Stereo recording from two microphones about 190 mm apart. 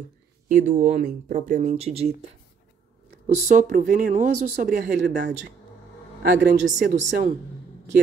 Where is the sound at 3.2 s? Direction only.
40° right (ahead or behind).